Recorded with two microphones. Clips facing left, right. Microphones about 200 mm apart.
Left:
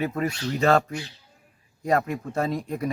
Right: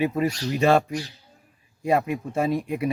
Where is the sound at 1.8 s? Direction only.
10° right (ahead or behind).